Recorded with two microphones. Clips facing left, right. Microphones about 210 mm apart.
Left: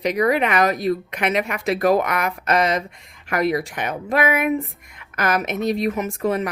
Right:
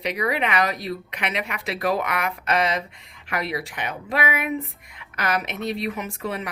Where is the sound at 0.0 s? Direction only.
45° left (ahead or behind).